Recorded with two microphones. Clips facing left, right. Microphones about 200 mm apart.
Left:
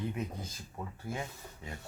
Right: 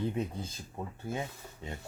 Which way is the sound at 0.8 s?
25° right (ahead or behind).